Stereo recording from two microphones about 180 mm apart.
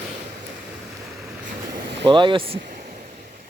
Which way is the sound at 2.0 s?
25° right (ahead or behind).